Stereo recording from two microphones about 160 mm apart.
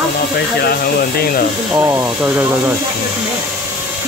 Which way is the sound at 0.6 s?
70° left (ahead or behind).